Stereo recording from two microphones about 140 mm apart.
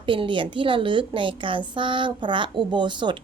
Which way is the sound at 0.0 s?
35° right (ahead or behind).